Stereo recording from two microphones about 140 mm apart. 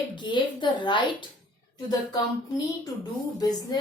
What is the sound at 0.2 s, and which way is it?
Female singing, 35° left (ahead or behind).